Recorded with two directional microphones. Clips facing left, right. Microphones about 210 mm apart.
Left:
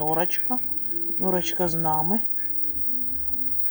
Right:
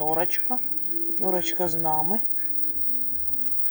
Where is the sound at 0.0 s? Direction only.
5° right (ahead or behind).